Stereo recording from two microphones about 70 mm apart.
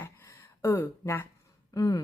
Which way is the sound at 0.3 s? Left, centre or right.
Left.